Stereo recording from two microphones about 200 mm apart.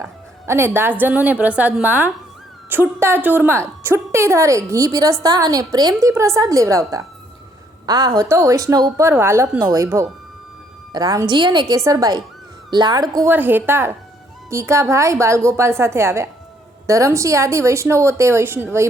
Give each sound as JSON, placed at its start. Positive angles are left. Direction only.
{"t": 0.0, "sound": "a woman's voice", "side_deg": -15}